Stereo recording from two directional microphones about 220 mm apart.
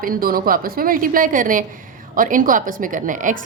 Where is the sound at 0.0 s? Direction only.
40° right (ahead or behind).